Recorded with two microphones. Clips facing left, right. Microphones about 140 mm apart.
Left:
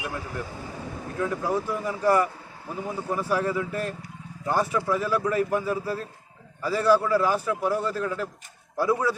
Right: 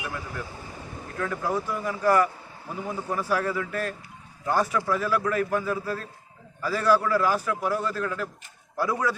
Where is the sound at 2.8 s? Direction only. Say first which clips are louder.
Left 1 dB; 5° left (ahead or behind).